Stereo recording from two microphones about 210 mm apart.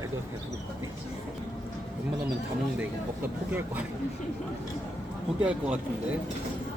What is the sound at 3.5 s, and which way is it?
Speech, 10° right (ahead or behind).